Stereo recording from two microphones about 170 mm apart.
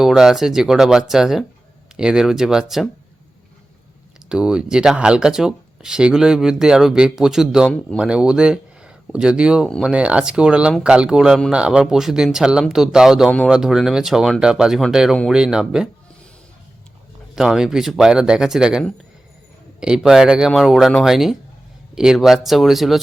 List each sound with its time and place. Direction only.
0.0 s speech: centre (ahead or behind)
4.3 s speech: 5° right (ahead or behind)
9.9 s speech: 5° right (ahead or behind)
17.3 s speech: centre (ahead or behind)